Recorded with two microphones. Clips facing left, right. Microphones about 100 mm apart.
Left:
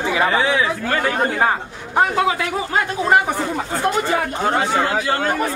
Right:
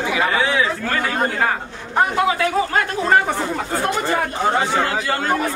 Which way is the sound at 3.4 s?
Centre (ahead or behind).